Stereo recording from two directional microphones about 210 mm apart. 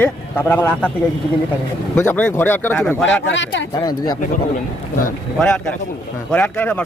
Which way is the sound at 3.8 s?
20° left (ahead or behind).